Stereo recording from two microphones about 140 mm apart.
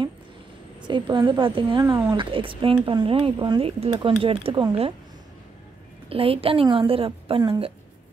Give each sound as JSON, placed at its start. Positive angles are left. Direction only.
{"t": 0.8, "sound": "speech", "side_deg": -35}
{"t": 6.0, "sound": "speech", "side_deg": -40}